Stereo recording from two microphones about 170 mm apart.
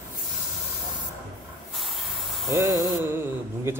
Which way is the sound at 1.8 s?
Centre (ahead or behind).